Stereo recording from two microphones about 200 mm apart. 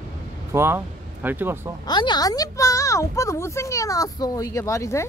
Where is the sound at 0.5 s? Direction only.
10° right (ahead or behind).